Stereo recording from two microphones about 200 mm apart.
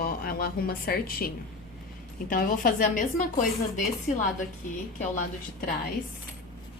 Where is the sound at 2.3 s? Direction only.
45° left (ahead or behind).